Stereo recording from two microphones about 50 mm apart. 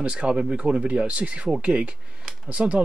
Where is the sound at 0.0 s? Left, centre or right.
Right.